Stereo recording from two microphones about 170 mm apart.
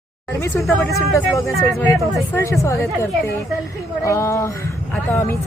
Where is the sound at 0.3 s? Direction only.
15° left (ahead or behind).